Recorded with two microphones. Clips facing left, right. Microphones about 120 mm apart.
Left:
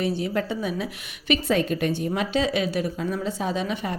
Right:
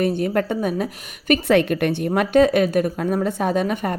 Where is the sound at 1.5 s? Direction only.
65° right (ahead or behind).